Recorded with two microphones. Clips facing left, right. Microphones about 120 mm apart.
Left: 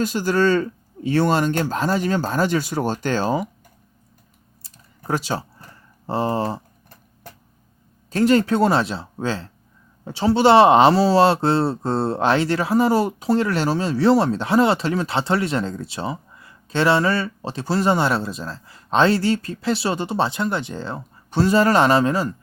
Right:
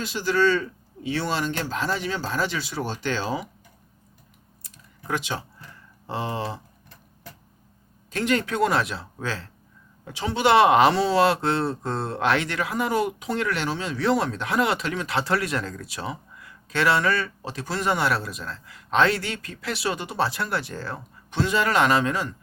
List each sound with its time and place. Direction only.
0.0 s speech: 45° left (ahead or behind)
4.6 s a sound: 35° left (ahead or behind)
6.1 s speech: 40° left (ahead or behind)
8.1 s speech: 35° left (ahead or behind)
21.2 s speech: 35° left (ahead or behind)